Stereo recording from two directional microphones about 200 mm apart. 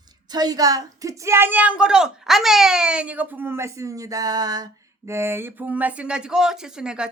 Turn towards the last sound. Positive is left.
turn(degrees=-5)  # may be behind; listen again after turning